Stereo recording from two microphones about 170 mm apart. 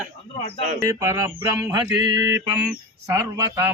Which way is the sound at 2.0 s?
90° right.